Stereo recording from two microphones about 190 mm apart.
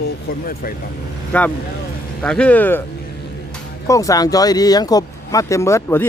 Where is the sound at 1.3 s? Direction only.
5° left (ahead or behind).